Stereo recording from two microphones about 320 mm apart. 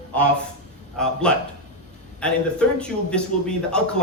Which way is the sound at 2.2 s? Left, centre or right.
Centre.